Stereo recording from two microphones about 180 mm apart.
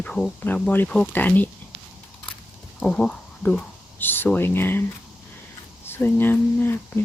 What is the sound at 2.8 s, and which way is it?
Speech, 5° left (ahead or behind).